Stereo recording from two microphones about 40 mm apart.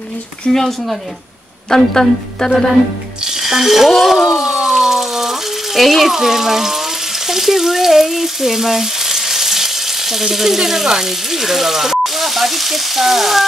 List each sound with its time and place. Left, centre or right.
0.5 s speech: centre
1.7 s speech: centre
3.4 s a sound: centre
5.8 s speech: centre
7.2 s frying: centre